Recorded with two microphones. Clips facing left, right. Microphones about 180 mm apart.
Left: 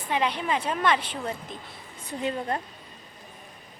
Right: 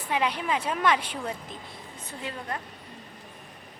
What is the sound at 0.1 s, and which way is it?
A woman's voice, 5° right (ahead or behind).